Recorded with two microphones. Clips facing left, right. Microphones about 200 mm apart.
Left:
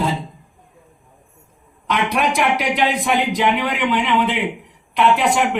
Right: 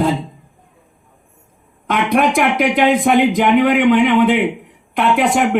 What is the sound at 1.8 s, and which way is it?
Speech, 50° right (ahead or behind).